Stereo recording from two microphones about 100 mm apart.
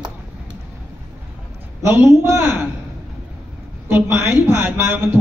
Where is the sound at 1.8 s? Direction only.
25° right (ahead or behind).